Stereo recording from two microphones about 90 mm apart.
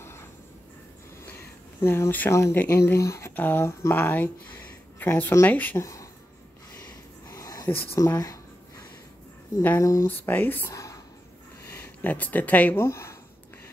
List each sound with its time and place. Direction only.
1.8 s speech: 25° left (ahead or behind)
5.8 s speech: 35° left (ahead or behind)
7.2 s a sound: 40° left (ahead or behind)
7.7 s speech: 25° left (ahead or behind)
9.8 s speech: 35° left (ahead or behind)
10.0 s speech: 20° left (ahead or behind)
10.7 s a sound: 40° left (ahead or behind)
11.7 s speech: 20° left (ahead or behind)